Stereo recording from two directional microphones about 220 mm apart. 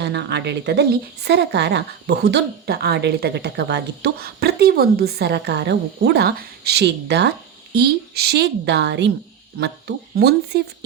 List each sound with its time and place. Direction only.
0.0 s a woman's voice: 50° right (ahead or behind)